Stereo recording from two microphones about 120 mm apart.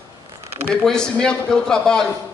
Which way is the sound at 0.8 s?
5° left (ahead or behind).